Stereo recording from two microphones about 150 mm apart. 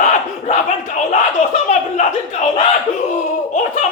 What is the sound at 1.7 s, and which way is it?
Speech, 50° left (ahead or behind).